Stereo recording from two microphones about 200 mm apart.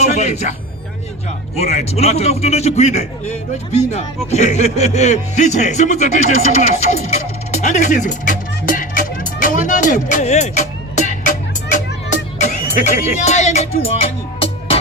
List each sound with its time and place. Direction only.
0.0 s vehicle: 35° left (ahead or behind)
1.5 s a man's voice: 30° left (ahead or behind)
12.4 s speech: 35° left (ahead or behind)